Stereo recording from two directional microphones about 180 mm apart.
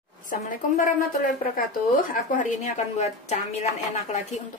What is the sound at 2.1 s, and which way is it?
A woman's voice, 45° left (ahead or behind).